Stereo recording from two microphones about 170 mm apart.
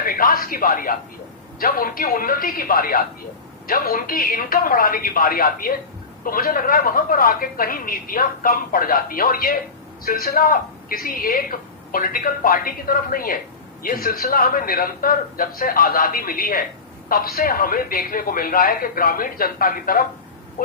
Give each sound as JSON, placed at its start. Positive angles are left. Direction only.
{"t": 0.0, "sound": "a woman's voice", "side_deg": 60}